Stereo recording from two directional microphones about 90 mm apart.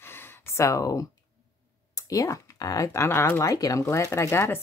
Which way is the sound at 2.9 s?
25° left (ahead or behind).